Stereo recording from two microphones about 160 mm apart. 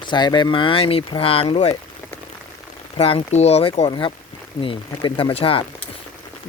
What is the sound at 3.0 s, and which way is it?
Speech, 35° left (ahead or behind).